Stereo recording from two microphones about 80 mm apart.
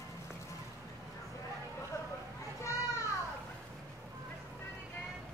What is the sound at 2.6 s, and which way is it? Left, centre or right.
Children playing, left.